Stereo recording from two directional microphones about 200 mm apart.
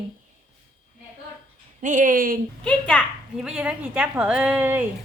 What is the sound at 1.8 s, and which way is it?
Speech, 40° right (ahead or behind).